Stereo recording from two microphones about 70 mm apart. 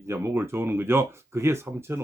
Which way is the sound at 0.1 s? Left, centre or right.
Right.